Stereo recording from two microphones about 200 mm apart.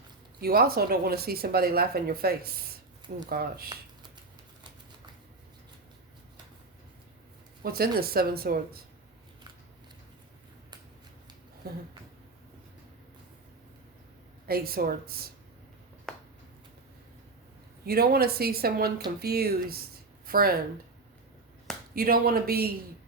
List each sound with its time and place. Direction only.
0.4 s speech: 50° right (ahead or behind)
7.6 s speech: 50° right (ahead or behind)
11.6 s speech: 50° right (ahead or behind)
14.4 s speech: 50° right (ahead or behind)
16.1 s a sound: 5° left (ahead or behind)
17.8 s speech: 50° right (ahead or behind)
21.9 s speech: 50° right (ahead or behind)